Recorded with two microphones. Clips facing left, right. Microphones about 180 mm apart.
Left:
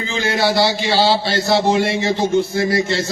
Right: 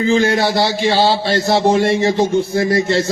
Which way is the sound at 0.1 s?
40° right (ahead or behind).